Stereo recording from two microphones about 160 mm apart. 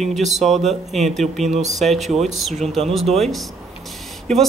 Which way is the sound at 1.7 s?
Centre (ahead or behind).